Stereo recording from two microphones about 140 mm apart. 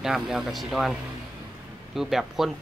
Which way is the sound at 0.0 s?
5° right (ahead or behind).